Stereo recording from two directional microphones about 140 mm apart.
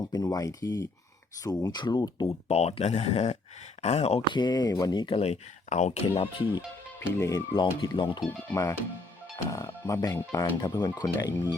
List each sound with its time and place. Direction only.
0.0 s speech: 30° left (ahead or behind)
2.5 s speech: 45° left (ahead or behind)
4.3 s speech: 35° left (ahead or behind); by 6.0 s 55° left (ahead or behind)
6.1 s speech: 40° left (ahead or behind)
7.2 s speech: 25° left (ahead or behind)
8.5 s speech: 20° left (ahead or behind)